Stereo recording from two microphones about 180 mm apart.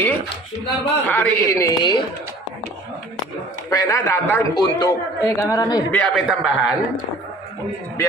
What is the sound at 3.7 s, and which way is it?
A man's voice, 15° left (ahead or behind).